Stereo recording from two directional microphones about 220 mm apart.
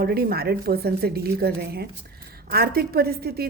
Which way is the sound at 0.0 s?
45° right (ahead or behind).